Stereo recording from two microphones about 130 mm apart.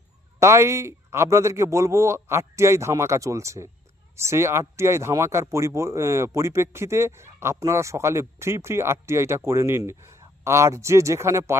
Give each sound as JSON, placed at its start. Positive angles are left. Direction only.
{"t": 0.3, "sound": "speech", "side_deg": -20}